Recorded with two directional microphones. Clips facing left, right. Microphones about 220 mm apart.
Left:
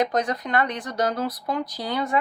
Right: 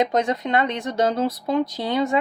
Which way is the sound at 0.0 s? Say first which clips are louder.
Right 3 dB; 25° right (ahead or behind).